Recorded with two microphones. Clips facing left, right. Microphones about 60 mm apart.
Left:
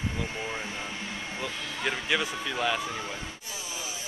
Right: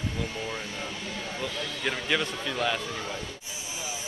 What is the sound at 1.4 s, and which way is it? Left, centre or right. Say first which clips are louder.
Speech: even; centre.